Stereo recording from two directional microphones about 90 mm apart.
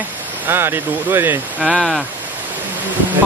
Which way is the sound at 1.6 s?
Centre (ahead or behind).